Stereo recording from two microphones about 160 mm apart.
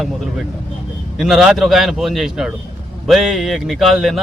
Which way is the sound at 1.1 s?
Centre (ahead or behind).